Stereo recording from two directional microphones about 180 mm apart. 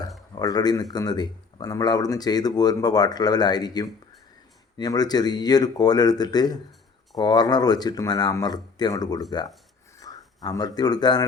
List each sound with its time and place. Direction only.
0.3 s a man's voice: 20° left (ahead or behind)